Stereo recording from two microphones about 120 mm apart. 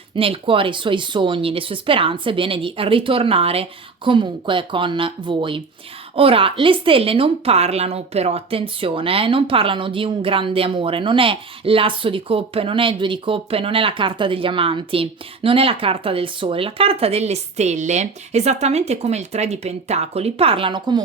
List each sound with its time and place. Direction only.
0.2 s speech: 50° right (ahead or behind)